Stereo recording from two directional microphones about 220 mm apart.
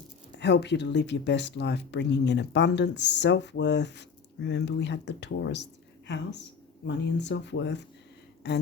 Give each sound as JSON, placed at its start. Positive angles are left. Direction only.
{"t": 0.3, "sound": "speech", "side_deg": 50}
{"t": 6.8, "sound": "speech", "side_deg": 55}